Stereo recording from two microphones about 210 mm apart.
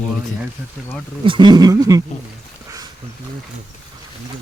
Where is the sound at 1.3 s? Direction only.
20° right (ahead or behind).